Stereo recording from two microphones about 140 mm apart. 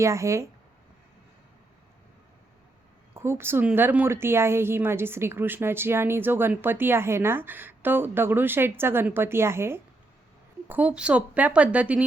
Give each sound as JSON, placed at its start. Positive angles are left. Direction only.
{"t": 0.0, "sound": "speech", "side_deg": -20}
{"t": 3.2, "sound": "a woman's voice", "side_deg": -20}